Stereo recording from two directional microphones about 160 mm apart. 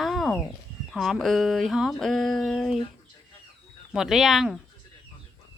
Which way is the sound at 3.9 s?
Centre (ahead or behind).